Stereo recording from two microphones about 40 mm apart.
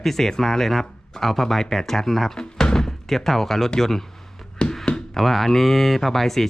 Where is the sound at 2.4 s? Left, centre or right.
Centre.